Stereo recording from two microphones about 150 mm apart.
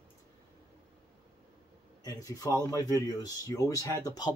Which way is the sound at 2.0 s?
25° left (ahead or behind).